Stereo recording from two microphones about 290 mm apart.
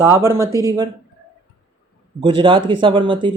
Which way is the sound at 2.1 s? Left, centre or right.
Centre.